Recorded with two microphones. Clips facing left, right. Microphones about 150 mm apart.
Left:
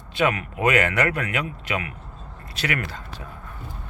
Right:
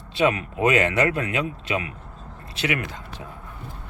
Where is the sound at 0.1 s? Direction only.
25° right (ahead or behind).